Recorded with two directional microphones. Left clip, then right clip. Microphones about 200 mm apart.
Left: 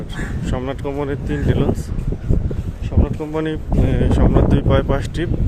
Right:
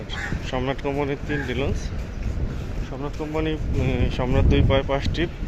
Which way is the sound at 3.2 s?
40° left (ahead or behind).